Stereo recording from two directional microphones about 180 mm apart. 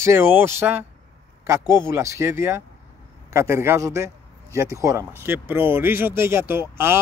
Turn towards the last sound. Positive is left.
turn(degrees=-15)  # may be behind; listen again after turning